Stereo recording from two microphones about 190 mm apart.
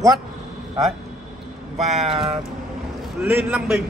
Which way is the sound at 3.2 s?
10° right (ahead or behind).